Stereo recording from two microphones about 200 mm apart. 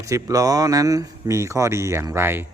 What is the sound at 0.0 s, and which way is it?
Speech, 15° right (ahead or behind).